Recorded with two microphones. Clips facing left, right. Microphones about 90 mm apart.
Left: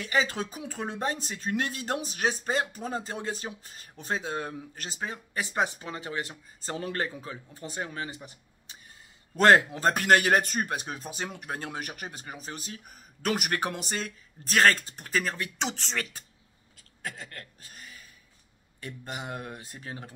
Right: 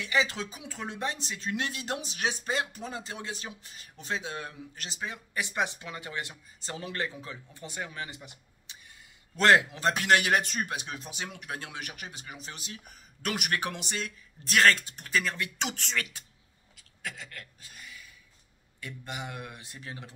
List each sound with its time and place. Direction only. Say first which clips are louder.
0.0 s speech: left 1 dB; 40° left (ahead or behind)
16.7 s a sound: left 2 dB; 40° left (ahead or behind)
18.8 s speech: left 1 dB; 40° left (ahead or behind)